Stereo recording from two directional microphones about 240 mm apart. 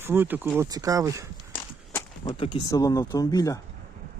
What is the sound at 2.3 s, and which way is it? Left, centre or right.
Speech, left.